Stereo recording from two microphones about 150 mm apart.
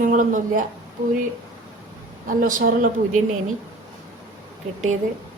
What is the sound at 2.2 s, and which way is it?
Speech, 65° right (ahead or behind).